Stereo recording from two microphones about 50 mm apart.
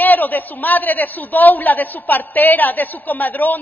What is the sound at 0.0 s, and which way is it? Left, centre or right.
A woman's voice, left.